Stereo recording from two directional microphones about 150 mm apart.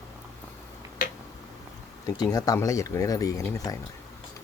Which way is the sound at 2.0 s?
25° left (ahead or behind).